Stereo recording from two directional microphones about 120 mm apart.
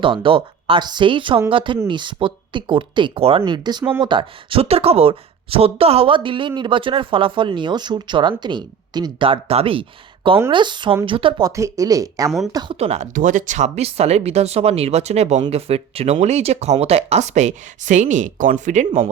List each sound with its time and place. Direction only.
0.0 s speech: 45° right (ahead or behind)
10.5 s speech: 40° right (ahead or behind)
11.4 s speech: 25° right (ahead or behind)
12.8 s speech: 65° right (ahead or behind); by 18.9 s 85° right